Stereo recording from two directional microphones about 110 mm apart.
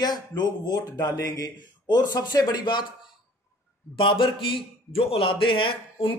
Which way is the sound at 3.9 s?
50° left (ahead or behind).